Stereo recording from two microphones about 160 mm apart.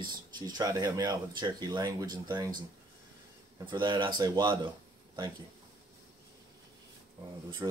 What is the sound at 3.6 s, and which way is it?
Speech, 30° right (ahead or behind).